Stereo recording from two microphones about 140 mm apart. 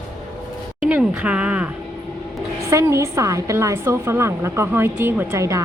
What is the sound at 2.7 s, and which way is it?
A woman's voice, 20° right (ahead or behind).